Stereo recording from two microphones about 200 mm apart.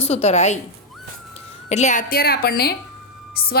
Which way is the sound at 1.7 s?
35° left (ahead or behind).